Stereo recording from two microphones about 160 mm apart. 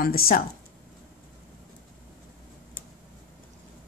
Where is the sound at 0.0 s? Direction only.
65° left (ahead or behind).